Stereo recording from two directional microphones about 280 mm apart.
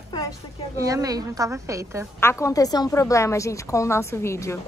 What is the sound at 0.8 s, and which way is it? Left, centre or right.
A woman's voice, centre.